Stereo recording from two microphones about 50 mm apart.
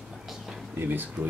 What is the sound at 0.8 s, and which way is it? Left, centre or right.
Speech, right.